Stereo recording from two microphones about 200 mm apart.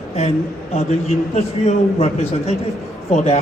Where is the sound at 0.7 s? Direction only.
30° left (ahead or behind).